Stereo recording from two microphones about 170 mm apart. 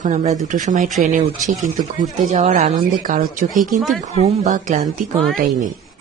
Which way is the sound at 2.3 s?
40° right (ahead or behind).